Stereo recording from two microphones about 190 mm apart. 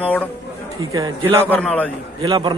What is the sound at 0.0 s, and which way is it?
Speech, 10° left (ahead or behind).